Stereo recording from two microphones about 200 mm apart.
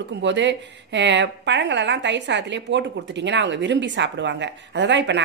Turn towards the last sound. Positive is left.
turn(degrees=-60)  # may be behind; listen again after turning